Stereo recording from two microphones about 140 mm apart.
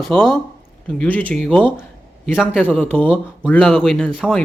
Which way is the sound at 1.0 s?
10° left (ahead or behind).